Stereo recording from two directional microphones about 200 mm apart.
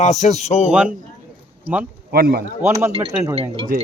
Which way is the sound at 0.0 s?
35° left (ahead or behind).